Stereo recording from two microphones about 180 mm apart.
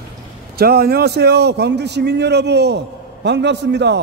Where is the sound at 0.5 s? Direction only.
60° right (ahead or behind).